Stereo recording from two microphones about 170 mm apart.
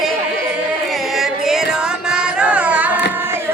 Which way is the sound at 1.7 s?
5° right (ahead or behind).